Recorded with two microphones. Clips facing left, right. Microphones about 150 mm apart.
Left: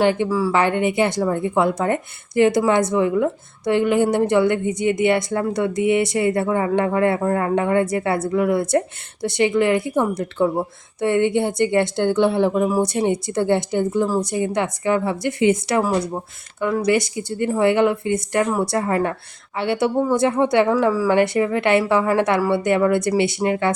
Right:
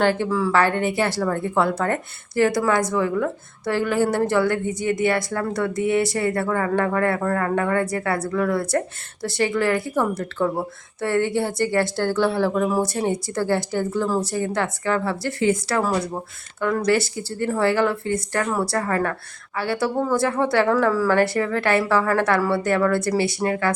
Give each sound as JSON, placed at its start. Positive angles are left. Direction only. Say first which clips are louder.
{"t": 0.0, "sound": "a woman's voice", "louder": "left 2 dB", "side_deg": 15}